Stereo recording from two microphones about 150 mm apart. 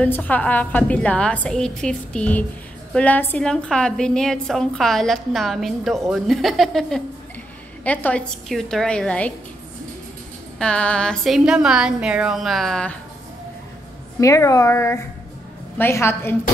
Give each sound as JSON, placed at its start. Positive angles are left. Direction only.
{"t": 0.0, "sound": "a woman's voice", "side_deg": 10}
{"t": 10.6, "sound": "a woman's voice", "side_deg": 5}
{"t": 14.2, "sound": "a woman's voice", "side_deg": 20}